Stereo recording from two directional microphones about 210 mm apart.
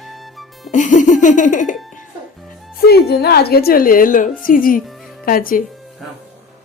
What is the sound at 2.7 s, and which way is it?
A woman's voice, 50° left (ahead or behind).